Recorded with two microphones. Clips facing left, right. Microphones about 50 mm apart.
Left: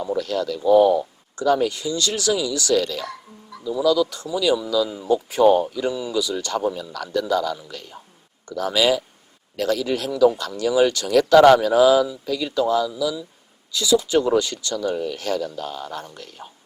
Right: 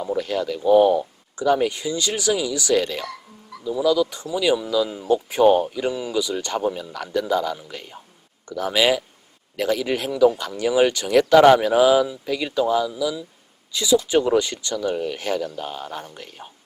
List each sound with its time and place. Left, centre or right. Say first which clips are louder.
0.2 s speech: even; right
3.0 s music: even; right
3.6 s speech: even; right